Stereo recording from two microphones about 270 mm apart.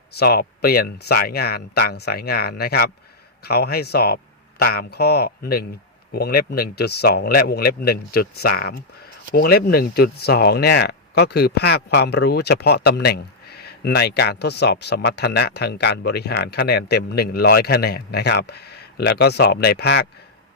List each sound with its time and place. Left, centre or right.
0.2 s speech: left